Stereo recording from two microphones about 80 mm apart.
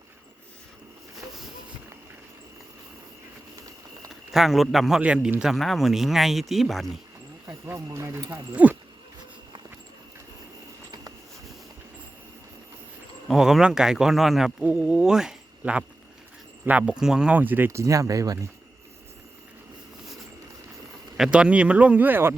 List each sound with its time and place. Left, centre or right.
4.3 s a man's voice: centre
7.4 s speech: right
13.2 s speech: centre
14.6 s speech: centre
17.3 s speech: right
17.7 s speech: right
21.2 s speech: centre; by 22.4 s right